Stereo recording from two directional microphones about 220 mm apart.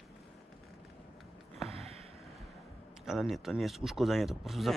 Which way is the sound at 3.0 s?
Centre (ahead or behind).